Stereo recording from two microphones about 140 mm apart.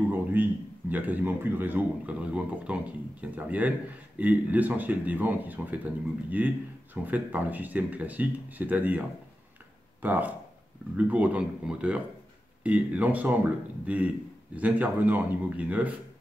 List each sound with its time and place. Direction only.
0.1 s a man's voice: 10° right (ahead or behind)
10.0 s a man's voice: 10° right (ahead or behind)